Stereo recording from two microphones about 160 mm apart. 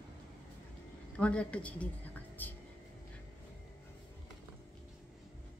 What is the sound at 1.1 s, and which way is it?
Speech, 5° left (ahead or behind).